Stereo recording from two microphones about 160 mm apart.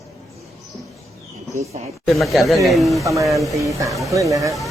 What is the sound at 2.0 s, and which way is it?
Speech, centre (ahead or behind).